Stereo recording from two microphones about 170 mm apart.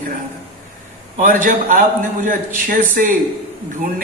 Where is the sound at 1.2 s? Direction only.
50° right (ahead or behind).